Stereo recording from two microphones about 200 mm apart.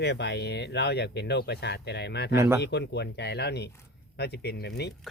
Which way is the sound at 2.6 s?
55° left (ahead or behind).